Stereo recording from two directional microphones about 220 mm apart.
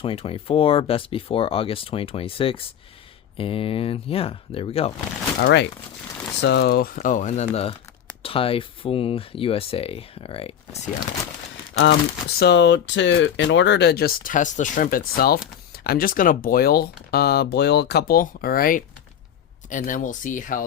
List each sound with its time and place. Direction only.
0.0 s speech: 25° left (ahead or behind)
5.4 s speech: 50° left (ahead or behind); by 10.8 s 25° left (ahead or behind)
11.7 s speech: 55° left (ahead or behind); by 20.7 s 35° left (ahead or behind)